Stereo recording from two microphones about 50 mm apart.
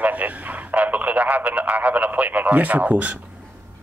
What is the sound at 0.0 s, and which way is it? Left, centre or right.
Speech, right.